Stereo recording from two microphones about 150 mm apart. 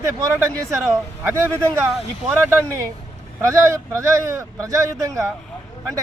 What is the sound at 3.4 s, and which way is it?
Speech, 20° right (ahead or behind).